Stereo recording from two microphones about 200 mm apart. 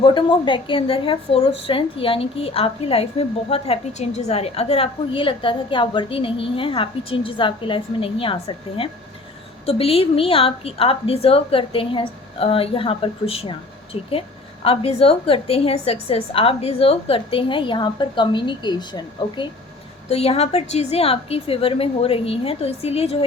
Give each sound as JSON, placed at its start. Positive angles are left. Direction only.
{"t": 0.0, "sound": "a woman's voice", "side_deg": 25}